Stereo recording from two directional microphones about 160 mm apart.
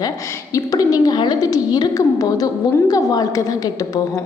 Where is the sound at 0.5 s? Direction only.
25° left (ahead or behind).